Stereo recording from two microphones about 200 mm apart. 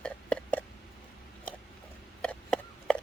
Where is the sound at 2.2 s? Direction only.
5° left (ahead or behind).